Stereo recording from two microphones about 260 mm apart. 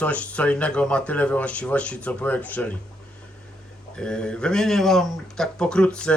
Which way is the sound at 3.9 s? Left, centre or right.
Centre.